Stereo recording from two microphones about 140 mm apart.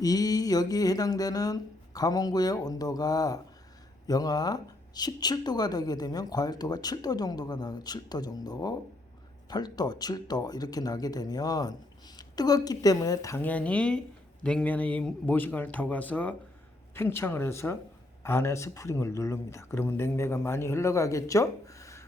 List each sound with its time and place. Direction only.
0.0 s speech: 25° left (ahead or behind)
13.4 s speech: 10° left (ahead or behind)